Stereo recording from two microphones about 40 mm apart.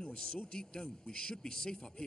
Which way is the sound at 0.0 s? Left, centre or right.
Centre.